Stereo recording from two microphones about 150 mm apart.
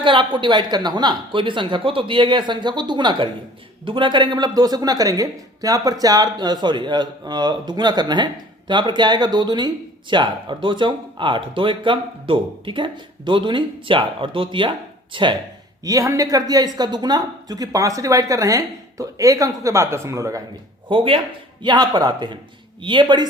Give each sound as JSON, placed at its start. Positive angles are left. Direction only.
{"t": 0.0, "sound": "a woman's voice", "side_deg": -35}
{"t": 20.9, "sound": "a woman's voice", "side_deg": -35}